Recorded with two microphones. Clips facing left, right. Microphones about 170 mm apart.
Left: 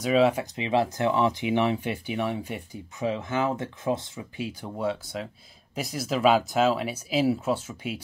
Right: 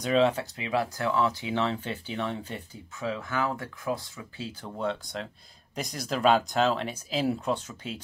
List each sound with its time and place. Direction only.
0.0 s speech: 5° left (ahead or behind); by 4.5 s 25° left (ahead or behind)
4.5 s speech: 10° left (ahead or behind)